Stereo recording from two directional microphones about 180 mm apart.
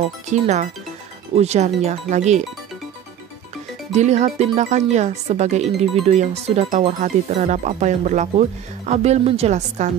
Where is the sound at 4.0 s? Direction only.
40° right (ahead or behind).